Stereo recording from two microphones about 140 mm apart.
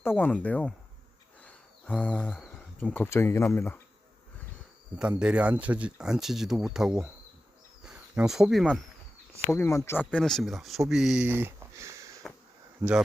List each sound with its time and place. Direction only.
0.0 s speech: 15° left (ahead or behind)
4.9 s speech: 5° right (ahead or behind)
9.5 s speech: 20° left (ahead or behind); by 11.3 s 5° right (ahead or behind)
11.3 s a sound: 15° right (ahead or behind)
12.8 s speech: 10° right (ahead or behind)